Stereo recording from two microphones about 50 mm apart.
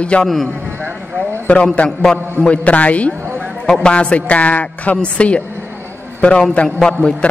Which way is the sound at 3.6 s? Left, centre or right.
Centre.